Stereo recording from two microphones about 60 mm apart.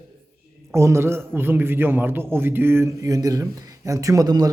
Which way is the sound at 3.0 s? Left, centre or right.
Right.